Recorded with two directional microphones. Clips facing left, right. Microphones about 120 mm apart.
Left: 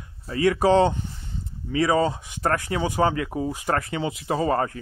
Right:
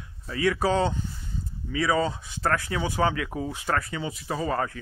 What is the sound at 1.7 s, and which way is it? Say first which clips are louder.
Speech: left 4 dB; 45° left (ahead or behind).